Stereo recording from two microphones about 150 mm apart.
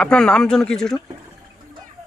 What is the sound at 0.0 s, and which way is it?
Speech, 5° left (ahead or behind).